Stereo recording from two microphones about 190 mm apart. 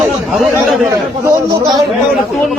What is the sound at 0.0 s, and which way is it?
Chatter, centre (ahead or behind).